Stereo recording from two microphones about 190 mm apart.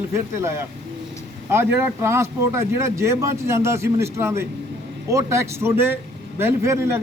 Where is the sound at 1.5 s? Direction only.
10° right (ahead or behind).